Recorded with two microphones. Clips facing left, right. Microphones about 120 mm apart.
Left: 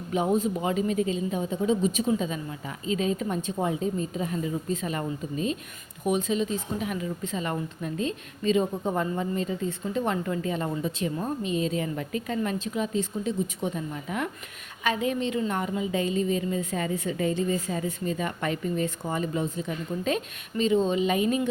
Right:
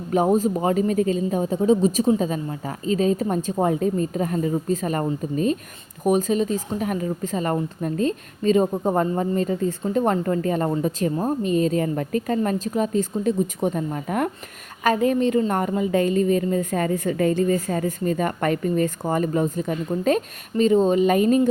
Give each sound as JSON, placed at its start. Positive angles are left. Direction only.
{"t": 0.1, "sound": "speech", "side_deg": -45}